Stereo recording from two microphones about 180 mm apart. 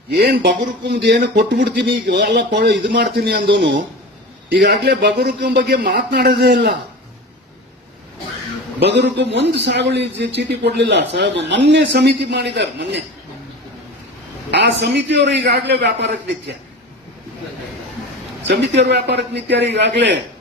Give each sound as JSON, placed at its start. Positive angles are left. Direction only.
{"t": 0.1, "sound": "a man's voice", "side_deg": -65}
{"t": 4.4, "sound": "a man's voice", "side_deg": -70}
{"t": 8.8, "sound": "a man's voice", "side_deg": -70}
{"t": 14.5, "sound": "a man's voice", "side_deg": -75}
{"t": 18.7, "sound": "a man's voice", "side_deg": -70}